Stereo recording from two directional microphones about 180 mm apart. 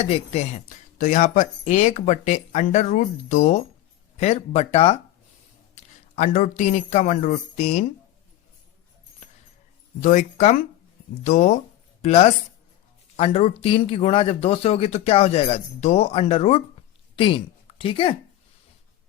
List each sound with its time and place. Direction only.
0.0 s speech: 35° left (ahead or behind)
0.9 s speech: 45° left (ahead or behind)
10.0 s speech: 40° left (ahead or behind)